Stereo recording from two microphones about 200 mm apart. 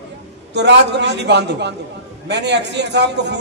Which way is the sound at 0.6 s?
60° right (ahead or behind).